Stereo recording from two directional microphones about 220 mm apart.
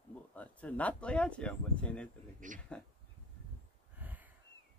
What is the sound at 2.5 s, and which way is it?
Speech, 35° right (ahead or behind).